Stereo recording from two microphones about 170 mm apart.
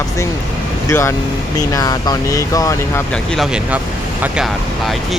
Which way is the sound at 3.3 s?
5° right (ahead or behind).